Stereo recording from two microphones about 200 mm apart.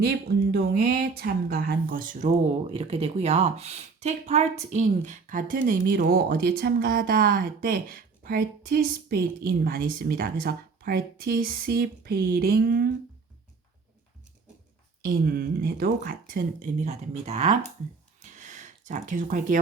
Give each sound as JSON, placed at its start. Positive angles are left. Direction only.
{"t": 0.5, "sound": "speech", "side_deg": -50}
{"t": 15.0, "sound": "speech", "side_deg": -50}
{"t": 18.2, "sound": "a sound", "side_deg": -35}